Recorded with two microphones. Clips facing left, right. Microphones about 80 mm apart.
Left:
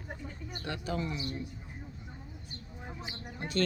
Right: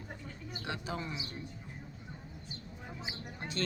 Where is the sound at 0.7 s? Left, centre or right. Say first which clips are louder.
Left 4 dB; right.